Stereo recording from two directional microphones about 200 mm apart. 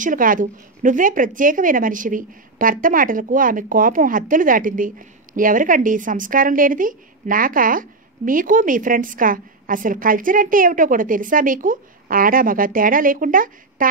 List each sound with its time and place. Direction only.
0.0 s a woman's voice: 40° right (ahead or behind)